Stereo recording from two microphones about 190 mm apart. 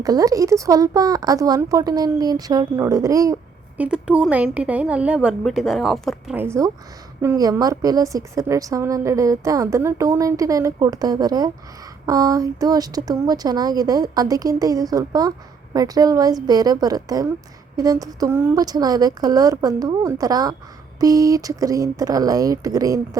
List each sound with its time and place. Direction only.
0.0 s speech: 20° right (ahead or behind)
3.8 s a woman's voice: 5° right (ahead or behind)
6.4 s a woman's voice: 15° right (ahead or behind)